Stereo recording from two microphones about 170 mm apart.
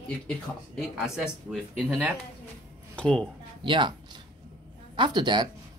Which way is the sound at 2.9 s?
5° left (ahead or behind).